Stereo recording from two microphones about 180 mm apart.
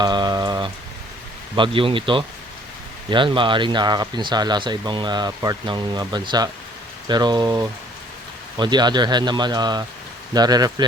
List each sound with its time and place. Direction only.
0.0 s rain: 25° right (ahead or behind)
1.5 s speech: 30° right (ahead or behind)